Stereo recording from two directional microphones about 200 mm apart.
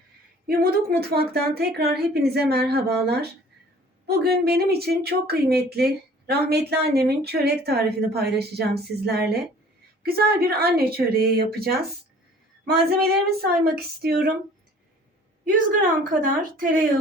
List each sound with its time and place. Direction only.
0.4 s speech: 50° right (ahead or behind)
15.4 s speech: 45° right (ahead or behind)